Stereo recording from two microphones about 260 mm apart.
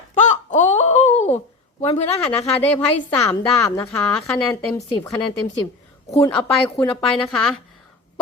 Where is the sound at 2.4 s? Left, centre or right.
Centre.